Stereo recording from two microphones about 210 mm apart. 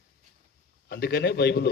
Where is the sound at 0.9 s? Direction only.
50° left (ahead or behind).